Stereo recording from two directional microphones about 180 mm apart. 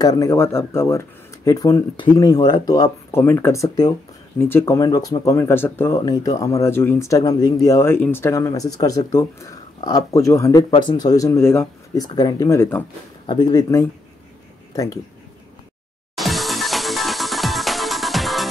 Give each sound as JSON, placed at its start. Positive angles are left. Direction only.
{"t": 0.0, "sound": "speech", "side_deg": 20}
{"t": 16.2, "sound": "music", "side_deg": 0}